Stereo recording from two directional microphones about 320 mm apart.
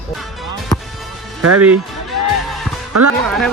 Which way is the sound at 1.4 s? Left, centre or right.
Right.